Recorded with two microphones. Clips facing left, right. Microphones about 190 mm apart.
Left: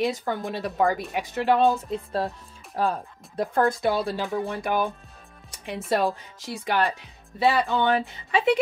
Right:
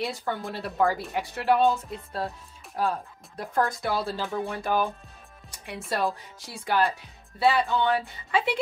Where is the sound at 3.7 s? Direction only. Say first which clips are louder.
Left 4 dB; 20° left (ahead or behind).